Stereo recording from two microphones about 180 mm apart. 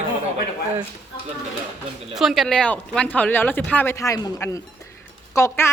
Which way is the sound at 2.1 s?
Centre (ahead or behind).